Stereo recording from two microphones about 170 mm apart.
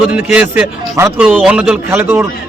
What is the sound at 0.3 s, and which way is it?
A man's voice, 10° right (ahead or behind).